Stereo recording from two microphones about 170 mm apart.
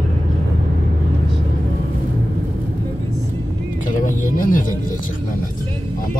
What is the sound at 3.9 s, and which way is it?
Music, 55° left (ahead or behind).